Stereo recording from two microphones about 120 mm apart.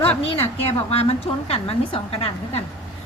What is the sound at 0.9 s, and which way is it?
A woman's voice, 55° left (ahead or behind).